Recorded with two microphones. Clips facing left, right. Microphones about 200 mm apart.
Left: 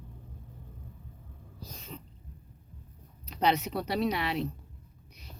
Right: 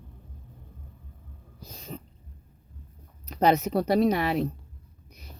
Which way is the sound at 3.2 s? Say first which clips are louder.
Right 5 dB; 45° right (ahead or behind).